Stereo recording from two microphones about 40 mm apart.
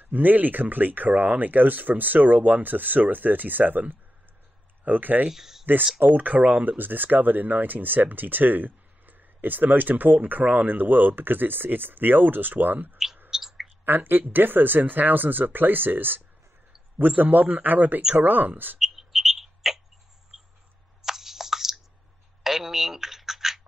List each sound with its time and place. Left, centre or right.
0.0 s speech: right
5.3 s speech: centre
6.0 s speech: right
12.9 s clicking: centre
13.3 s a sound: centre
13.8 s speech: right
17.2 s speech: right
18.8 s bird: centre
21.0 s a sound: centre
22.4 s scratch: centre